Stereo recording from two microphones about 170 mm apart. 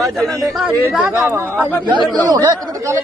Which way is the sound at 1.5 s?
10° left (ahead or behind).